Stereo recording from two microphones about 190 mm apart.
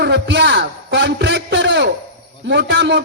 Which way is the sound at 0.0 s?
65° right (ahead or behind).